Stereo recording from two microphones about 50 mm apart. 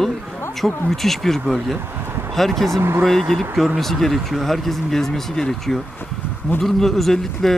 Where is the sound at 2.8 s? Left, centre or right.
Right.